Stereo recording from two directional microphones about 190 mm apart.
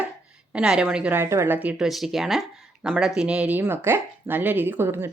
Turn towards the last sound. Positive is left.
turn(degrees=-10)  # may be behind; listen again after turning